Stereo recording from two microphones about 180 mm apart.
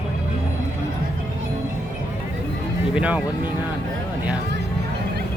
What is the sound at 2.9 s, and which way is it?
Music, 5° right (ahead or behind).